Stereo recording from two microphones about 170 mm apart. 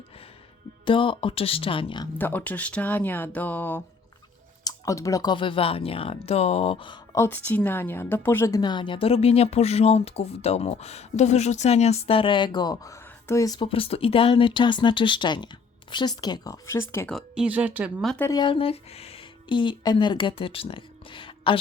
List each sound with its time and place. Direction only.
0.9 s a woman's voice: 30° left (ahead or behind)
2.1 s a woman's voice: 10° left (ahead or behind); by 7.2 s 25° left (ahead or behind)
7.2 s a woman's voice: 10° left (ahead or behind)
17.1 s speech: centre (ahead or behind)
18.0 s speech: 5° left (ahead or behind)
18.3 s speech: 25° left (ahead or behind)